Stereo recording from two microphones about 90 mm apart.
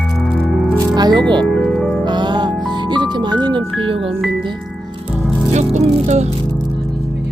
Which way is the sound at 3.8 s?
85° right.